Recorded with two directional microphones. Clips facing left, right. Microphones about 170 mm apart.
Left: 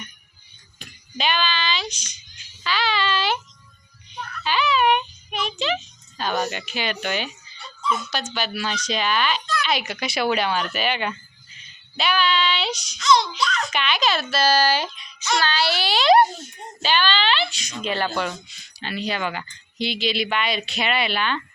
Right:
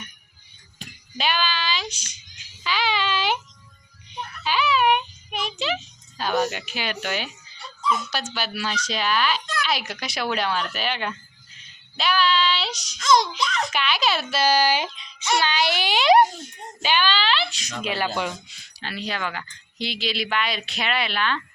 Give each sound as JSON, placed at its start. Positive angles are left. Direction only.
{"t": 1.1, "sound": "female singing", "side_deg": -5}
{"t": 2.6, "sound": "a sound", "side_deg": -15}
{"t": 4.4, "sound": "a sound", "side_deg": -10}
{"t": 6.3, "sound": "speech", "side_deg": 0}
{"t": 13.0, "sound": "a child's voice", "side_deg": -50}
{"t": 13.4, "sound": "babbling", "side_deg": -20}
{"t": 13.7, "sound": "speech", "side_deg": -5}
{"t": 14.9, "sound": "child singing", "side_deg": -25}
{"t": 15.4, "sound": "speech", "side_deg": -15}